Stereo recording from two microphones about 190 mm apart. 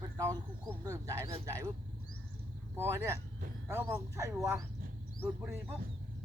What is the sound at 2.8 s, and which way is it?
Speech, 15° right (ahead or behind).